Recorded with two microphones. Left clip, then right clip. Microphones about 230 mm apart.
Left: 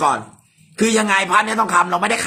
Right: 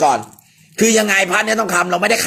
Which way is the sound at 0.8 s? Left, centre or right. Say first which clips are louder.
Right 3 dB; centre.